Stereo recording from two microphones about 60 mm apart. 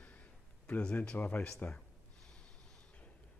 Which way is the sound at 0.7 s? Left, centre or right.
Left.